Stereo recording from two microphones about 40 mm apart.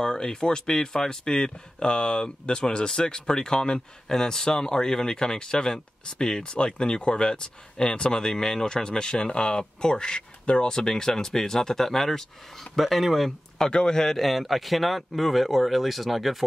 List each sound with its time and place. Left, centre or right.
0.0 s speech: centre
10.7 s speech: centre
13.6 s speech: centre